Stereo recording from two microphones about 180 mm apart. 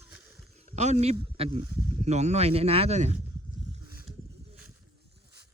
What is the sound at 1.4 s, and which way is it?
Speech, 30° right (ahead or behind).